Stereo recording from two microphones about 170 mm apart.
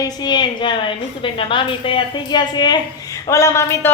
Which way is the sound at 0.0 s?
25° left (ahead or behind).